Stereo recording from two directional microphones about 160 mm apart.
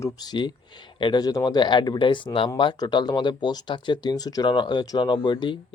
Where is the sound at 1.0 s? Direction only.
30° left (ahead or behind).